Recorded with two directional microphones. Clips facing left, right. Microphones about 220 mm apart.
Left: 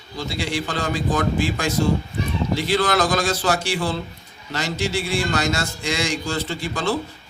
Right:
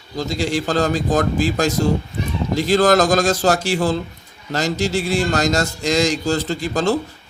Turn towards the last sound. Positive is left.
turn(degrees=-40)  # may be behind; listen again after turning